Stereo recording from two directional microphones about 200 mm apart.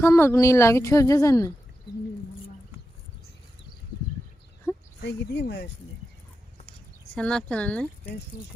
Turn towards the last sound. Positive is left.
turn(degrees=5)  # may be behind; listen again after turning